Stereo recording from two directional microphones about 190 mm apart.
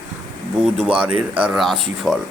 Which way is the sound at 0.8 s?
5° right (ahead or behind).